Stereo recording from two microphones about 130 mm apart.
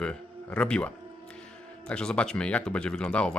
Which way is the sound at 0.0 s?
10° left (ahead or behind).